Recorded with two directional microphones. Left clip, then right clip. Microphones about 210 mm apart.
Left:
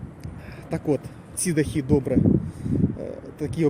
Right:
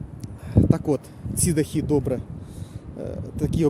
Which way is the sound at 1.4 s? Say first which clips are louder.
Even; 5° right (ahead or behind).